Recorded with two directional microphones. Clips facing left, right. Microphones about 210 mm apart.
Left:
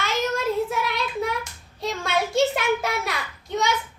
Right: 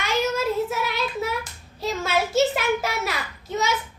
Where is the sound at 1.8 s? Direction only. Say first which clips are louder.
Right 1 dB; 5° right (ahead or behind).